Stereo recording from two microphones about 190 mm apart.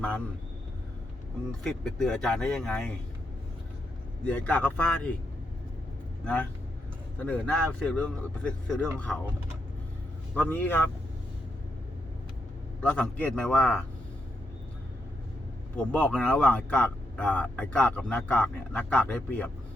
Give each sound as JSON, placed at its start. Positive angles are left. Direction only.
{"t": 1.6, "sound": "speech", "side_deg": 5}
{"t": 4.3, "sound": "speech", "side_deg": 10}
{"t": 6.2, "sound": "speech", "side_deg": 5}
{"t": 10.3, "sound": "speech", "side_deg": 10}
{"t": 12.8, "sound": "speech", "side_deg": 5}
{"t": 15.7, "sound": "speech", "side_deg": 10}